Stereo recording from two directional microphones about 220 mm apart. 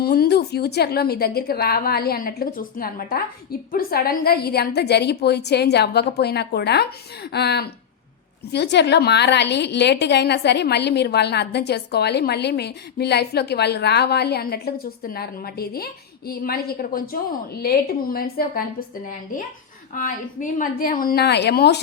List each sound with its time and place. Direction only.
0.0 s a woman's voice: 45° left (ahead or behind)
19.9 s a woman's voice: 35° left (ahead or behind)